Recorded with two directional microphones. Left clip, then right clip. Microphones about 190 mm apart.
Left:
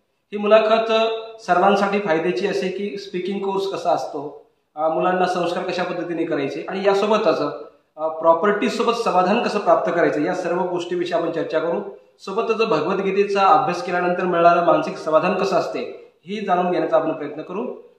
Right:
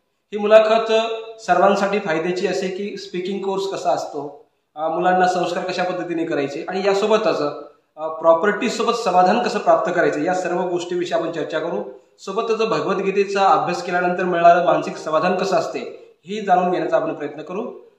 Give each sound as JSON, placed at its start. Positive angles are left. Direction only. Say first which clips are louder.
{"t": 0.3, "sound": "speech", "louder": "right 2 dB", "side_deg": -20}